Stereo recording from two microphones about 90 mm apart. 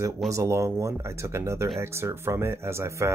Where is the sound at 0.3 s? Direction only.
35° right (ahead or behind).